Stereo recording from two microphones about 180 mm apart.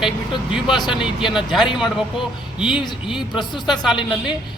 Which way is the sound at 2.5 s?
5° right (ahead or behind).